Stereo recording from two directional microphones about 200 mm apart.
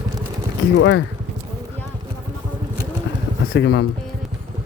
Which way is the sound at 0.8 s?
65° left (ahead or behind).